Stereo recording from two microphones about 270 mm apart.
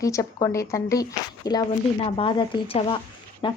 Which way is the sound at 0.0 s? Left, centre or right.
Centre.